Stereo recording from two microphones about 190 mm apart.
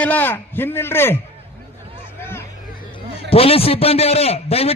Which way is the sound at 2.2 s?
10° left (ahead or behind).